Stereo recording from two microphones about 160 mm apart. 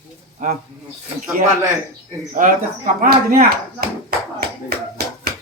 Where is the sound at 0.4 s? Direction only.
50° right (ahead or behind).